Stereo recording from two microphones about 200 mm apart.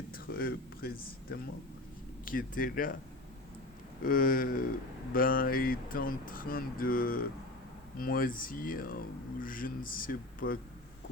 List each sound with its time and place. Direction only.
0.3 s speech: 50° left (ahead or behind)
4.0 s speech: 45° left (ahead or behind)